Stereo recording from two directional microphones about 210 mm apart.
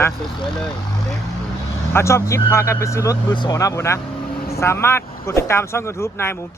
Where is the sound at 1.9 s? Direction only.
15° left (ahead or behind).